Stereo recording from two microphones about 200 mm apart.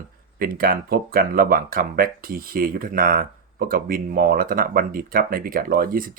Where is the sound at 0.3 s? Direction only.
45° right (ahead or behind).